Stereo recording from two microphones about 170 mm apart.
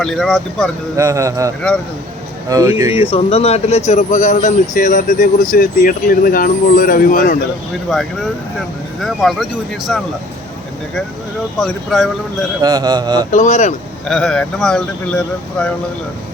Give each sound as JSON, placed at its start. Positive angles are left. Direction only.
{"t": 0.0, "sound": "speech", "side_deg": 0}
{"t": 0.9, "sound": "speech", "side_deg": -20}
{"t": 2.9, "sound": "speech", "side_deg": 35}
{"t": 7.9, "sound": "speech", "side_deg": 0}
{"t": 11.6, "sound": "speech", "side_deg": 0}
{"t": 12.6, "sound": "speech", "side_deg": -20}
{"t": 13.3, "sound": "speech", "side_deg": 45}
{"t": 14.1, "sound": "speech", "side_deg": 5}